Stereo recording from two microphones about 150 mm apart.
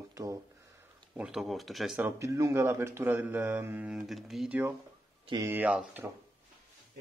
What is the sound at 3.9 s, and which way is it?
Speech, centre (ahead or behind).